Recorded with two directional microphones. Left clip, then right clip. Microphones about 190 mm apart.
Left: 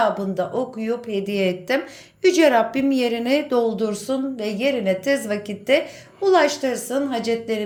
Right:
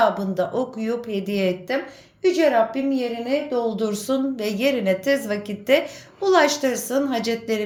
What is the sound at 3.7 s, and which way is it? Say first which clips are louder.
A woman's voice: even; centre (ahead or behind).